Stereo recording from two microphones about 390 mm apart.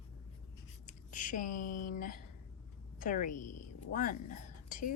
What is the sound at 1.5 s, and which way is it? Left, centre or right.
Speech, left.